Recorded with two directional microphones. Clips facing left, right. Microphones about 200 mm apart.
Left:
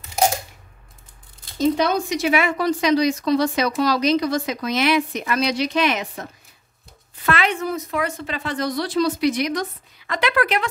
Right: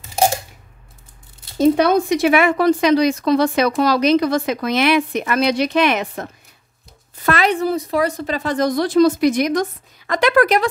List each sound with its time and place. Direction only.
1.6 s a woman's voice: 55° right (ahead or behind)
7.2 s a woman's voice: 40° right (ahead or behind)